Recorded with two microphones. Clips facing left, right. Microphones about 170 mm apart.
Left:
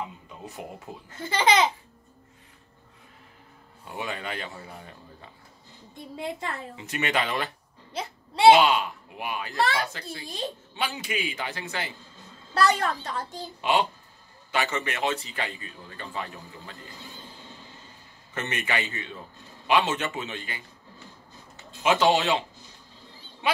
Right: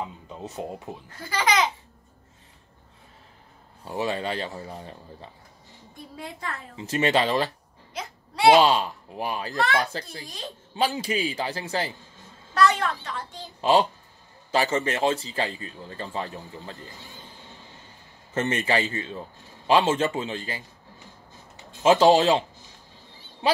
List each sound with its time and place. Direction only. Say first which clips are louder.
0.3 s speech: right 5 dB; 25° right (ahead or behind)
1.1 s speech: left 2 dB; 25° left (ahead or behind)
3.8 s a man's voice: right 6 dB; 35° right (ahead or behind)
6.1 s speech: left 4 dB; 20° left (ahead or behind)
6.8 s a man's voice: right 6 dB; 30° right (ahead or behind)
7.9 s a sound: left 2 dB; 30° left (ahead or behind)
8.5 s a man's voice: right 2 dB; 35° right (ahead or behind)
12.5 s a child's voice: right 1 dB; 40° left (ahead or behind)
13.6 s a man's voice: right 4 dB; 35° right (ahead or behind)
18.3 s a man's voice: right 6 dB; 30° right (ahead or behind)
21.8 s a man's voice: right 5 dB; 35° right (ahead or behind)
23.4 s a man's voice: right 4 dB; 30° right (ahead or behind)